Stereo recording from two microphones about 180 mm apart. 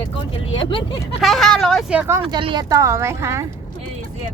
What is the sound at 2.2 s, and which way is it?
Speech, 30° right (ahead or behind).